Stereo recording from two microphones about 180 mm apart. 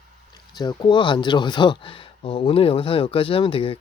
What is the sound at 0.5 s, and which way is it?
Speech, 25° left (ahead or behind).